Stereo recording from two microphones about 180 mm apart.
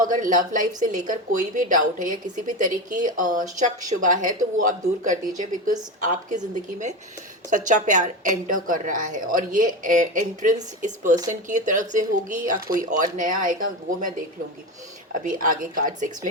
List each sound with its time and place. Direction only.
0.0 s a woman's voice: 45° right (ahead or behind)
15.2 s a woman's voice: 50° right (ahead or behind)